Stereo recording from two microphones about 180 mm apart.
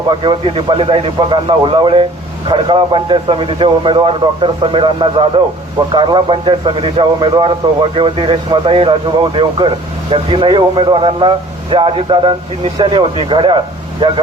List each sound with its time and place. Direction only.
0.1 s a man's voice: 25° right (ahead or behind)